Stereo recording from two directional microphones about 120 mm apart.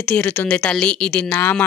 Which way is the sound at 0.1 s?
15° left (ahead or behind).